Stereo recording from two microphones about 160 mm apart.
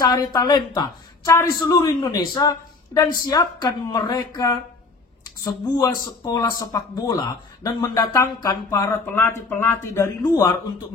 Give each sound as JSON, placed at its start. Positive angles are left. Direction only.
{"t": 0.0, "sound": "speech", "side_deg": 25}